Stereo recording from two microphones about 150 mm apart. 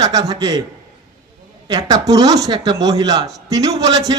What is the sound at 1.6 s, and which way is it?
A man's voice, 25° right (ahead or behind).